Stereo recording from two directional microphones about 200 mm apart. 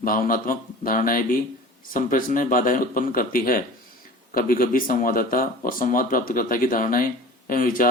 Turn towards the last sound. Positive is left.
turn(degrees=45)  # may be behind; listen again after turning